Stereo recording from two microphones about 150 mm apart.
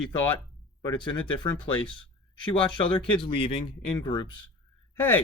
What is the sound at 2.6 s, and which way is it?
Speech, 30° left (ahead or behind).